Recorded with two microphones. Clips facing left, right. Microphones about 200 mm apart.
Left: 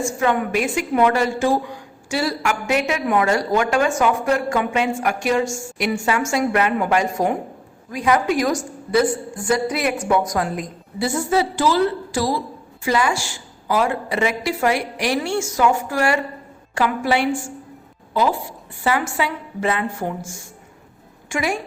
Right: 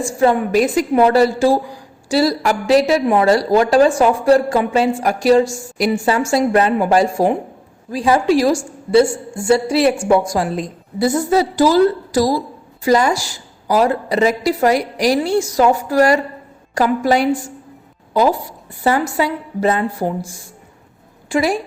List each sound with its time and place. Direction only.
0.0 s a woman's voice: 35° right (ahead or behind)